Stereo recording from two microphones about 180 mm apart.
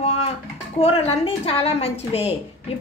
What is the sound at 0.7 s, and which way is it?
A man's voice, 35° left (ahead or behind).